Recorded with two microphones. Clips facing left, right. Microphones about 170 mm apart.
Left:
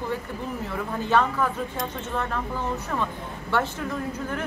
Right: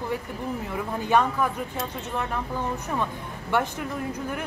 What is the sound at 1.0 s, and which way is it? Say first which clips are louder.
A woman's voice: even; 15° right (ahead or behind).